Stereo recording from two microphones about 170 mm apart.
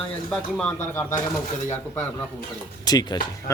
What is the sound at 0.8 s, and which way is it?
Speech, 15° left (ahead or behind).